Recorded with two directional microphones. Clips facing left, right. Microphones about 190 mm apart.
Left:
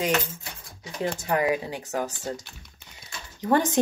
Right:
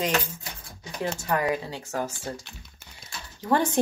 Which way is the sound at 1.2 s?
15° left (ahead or behind).